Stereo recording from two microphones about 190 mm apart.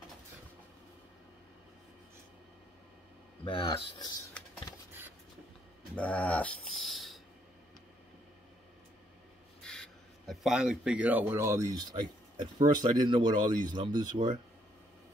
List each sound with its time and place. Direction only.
3.4 s speech: 30° left (ahead or behind)
5.9 s a sound: 5° left (ahead or behind)
9.6 s speech: 5° left (ahead or behind); by 14.3 s 25° right (ahead or behind)